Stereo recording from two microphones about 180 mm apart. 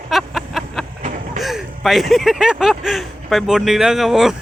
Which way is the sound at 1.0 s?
45° right (ahead or behind).